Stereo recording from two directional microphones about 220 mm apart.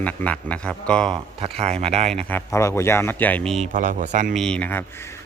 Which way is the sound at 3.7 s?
35° right (ahead or behind).